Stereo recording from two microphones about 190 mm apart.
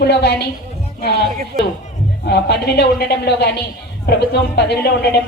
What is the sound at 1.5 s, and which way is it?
Speech, 50° right (ahead or behind).